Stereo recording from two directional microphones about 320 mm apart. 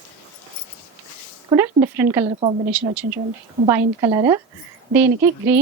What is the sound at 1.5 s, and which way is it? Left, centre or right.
Speech, centre.